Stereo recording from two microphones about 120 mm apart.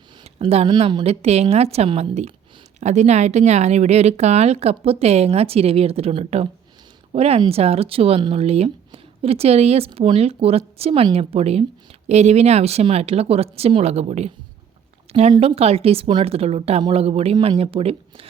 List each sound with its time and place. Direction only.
0.3 s speech: 55° right (ahead or behind)
1.2 s a woman's voice: 60° right (ahead or behind)
15.4 s speech: 55° right (ahead or behind)